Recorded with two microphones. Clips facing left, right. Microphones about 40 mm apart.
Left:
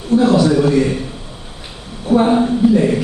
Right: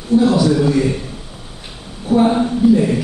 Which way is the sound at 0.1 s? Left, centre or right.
Left.